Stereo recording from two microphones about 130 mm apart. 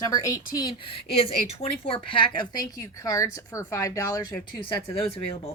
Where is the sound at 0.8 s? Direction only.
45° left (ahead or behind); by 4.2 s 25° left (ahead or behind).